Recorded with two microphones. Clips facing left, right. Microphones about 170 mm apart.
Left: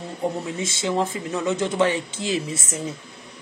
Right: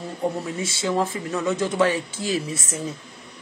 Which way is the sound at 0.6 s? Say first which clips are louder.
Even; 20° left (ahead or behind).